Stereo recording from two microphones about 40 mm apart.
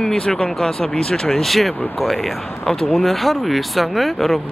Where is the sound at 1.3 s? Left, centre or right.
Centre.